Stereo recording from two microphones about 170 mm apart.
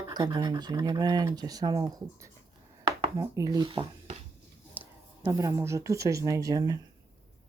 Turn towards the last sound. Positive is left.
turn(degrees=-20)  # may be behind; listen again after turning